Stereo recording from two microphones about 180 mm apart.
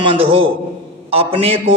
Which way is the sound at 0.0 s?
30° right (ahead or behind).